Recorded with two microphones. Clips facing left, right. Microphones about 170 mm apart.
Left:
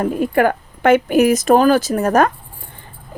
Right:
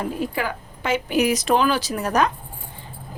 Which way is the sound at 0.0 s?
55° left (ahead or behind).